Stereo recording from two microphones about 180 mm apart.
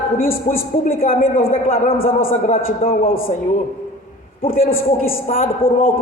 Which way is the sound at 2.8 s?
30° left (ahead or behind).